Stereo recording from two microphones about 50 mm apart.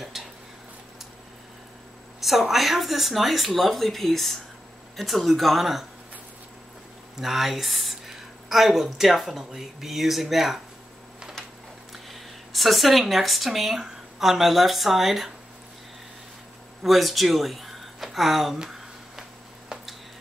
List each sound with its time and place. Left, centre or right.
0.2 s a sound: centre
2.1 s speech: centre
7.2 s speech: centre
11.9 s speech: centre
16.8 s speech: centre
18.6 s a sound: centre